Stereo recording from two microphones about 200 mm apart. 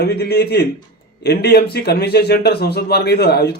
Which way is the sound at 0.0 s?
55° left (ahead or behind).